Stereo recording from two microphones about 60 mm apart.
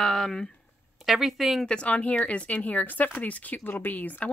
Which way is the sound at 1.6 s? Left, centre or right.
Centre.